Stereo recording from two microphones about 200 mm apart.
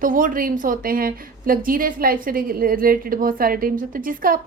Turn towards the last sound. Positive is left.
turn(degrees=-45)  # may be behind; listen again after turning